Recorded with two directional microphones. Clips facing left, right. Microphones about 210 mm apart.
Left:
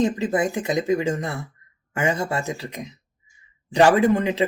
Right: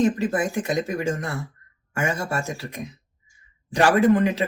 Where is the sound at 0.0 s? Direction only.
20° left (ahead or behind).